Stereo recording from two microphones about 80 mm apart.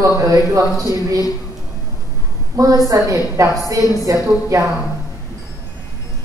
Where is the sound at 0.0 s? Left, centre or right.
Right.